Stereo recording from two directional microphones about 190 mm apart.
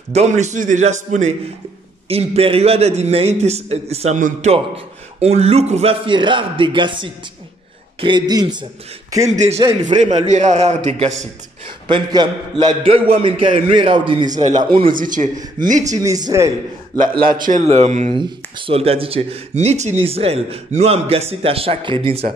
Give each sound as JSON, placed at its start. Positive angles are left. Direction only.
{"t": 0.1, "sound": "a man's voice", "side_deg": -35}
{"t": 9.3, "sound": "speech", "side_deg": -35}
{"t": 9.6, "sound": "a man's voice", "side_deg": -20}
{"t": 9.9, "sound": "speech", "side_deg": -40}
{"t": 11.9, "sound": "a man's voice", "side_deg": -20}
{"t": 14.3, "sound": "speech", "side_deg": -40}
{"t": 14.6, "sound": "a man's voice", "side_deg": -25}
{"t": 14.9, "sound": "speech", "side_deg": -45}
{"t": 16.0, "sound": "a man's voice", "side_deg": -20}
{"t": 17.2, "sound": "speech", "side_deg": -45}